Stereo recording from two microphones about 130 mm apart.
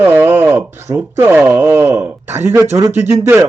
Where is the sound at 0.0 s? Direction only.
15° right (ahead or behind).